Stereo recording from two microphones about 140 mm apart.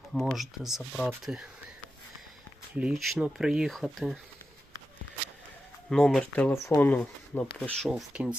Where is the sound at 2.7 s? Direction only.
Centre (ahead or behind).